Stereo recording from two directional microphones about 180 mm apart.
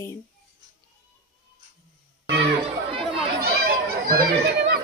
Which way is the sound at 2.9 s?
30° right (ahead or behind).